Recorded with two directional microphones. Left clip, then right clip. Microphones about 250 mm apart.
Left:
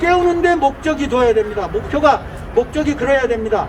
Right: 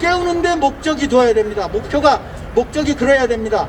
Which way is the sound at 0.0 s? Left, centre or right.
Right.